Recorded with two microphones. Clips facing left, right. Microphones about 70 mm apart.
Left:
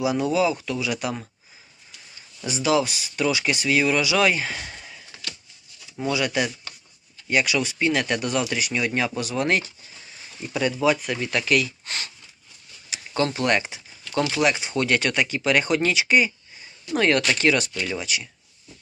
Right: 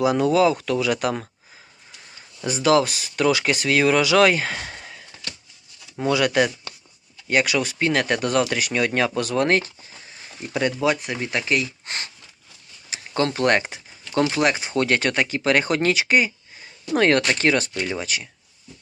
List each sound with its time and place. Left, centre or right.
0.0 s speech: right
2.4 s speech: right
11.1 s speech: right
12.9 s speech: right
14.5 s speech: right